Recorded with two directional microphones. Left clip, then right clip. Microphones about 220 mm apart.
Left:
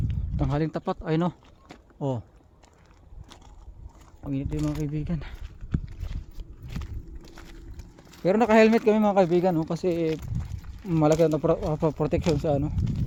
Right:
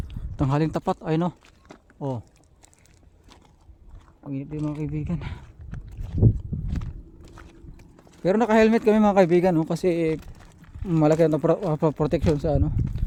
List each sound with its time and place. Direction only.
0.3 s speech: 20° right (ahead or behind); by 2.2 s centre (ahead or behind)
4.2 s speech: 5° left (ahead or behind); by 5.4 s 10° right (ahead or behind)
5.8 s a sound: 45° left (ahead or behind)
8.2 s speech: 10° right (ahead or behind)